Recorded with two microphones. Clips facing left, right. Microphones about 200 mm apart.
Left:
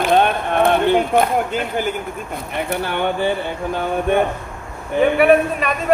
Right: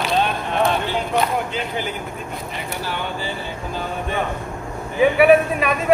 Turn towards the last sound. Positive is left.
turn(degrees=0)  # may be behind; listen again after turning